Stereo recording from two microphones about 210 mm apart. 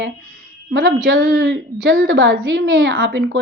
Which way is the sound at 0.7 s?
65° right (ahead or behind).